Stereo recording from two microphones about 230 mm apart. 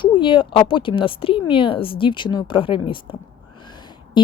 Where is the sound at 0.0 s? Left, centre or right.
Left.